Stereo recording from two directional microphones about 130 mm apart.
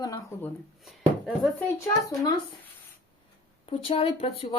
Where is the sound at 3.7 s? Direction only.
50° left (ahead or behind).